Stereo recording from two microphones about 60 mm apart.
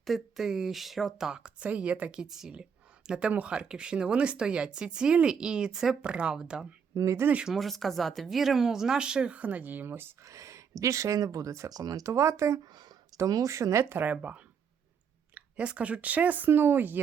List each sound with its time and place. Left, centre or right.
0.0 s speech: centre; by 2.2 s right
2.2 s a woman's voice: centre
6.0 s a woman's voice: centre
6.9 s speech: right
7.5 s speech: centre; by 10.1 s right
10.2 s speech: right
12.0 s speech: right
13.1 s speech: right
13.9 s a woman's voice: right
16.5 s speech: right